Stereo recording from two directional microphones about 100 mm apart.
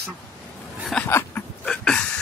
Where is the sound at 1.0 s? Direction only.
20° left (ahead or behind).